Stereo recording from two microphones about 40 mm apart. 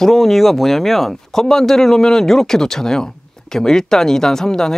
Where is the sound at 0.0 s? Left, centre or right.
Centre.